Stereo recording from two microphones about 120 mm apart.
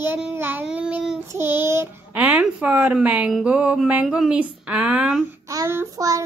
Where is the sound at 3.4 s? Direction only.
10° right (ahead or behind).